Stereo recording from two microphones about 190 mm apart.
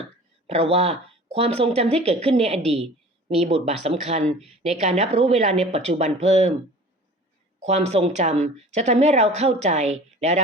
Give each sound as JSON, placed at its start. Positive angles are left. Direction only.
{"t": 0.4, "sound": "speech", "side_deg": -35}
{"t": 7.6, "sound": "speech", "side_deg": -35}